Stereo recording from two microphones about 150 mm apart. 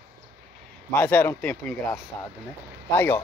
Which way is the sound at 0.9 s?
10° left (ahead or behind).